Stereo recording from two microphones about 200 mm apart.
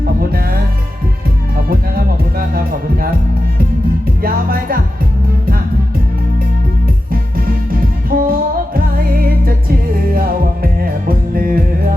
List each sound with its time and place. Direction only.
0.0 s music: 50° right (ahead or behind)
4.2 s music: 45° right (ahead or behind)
7.1 s music: 45° right (ahead or behind)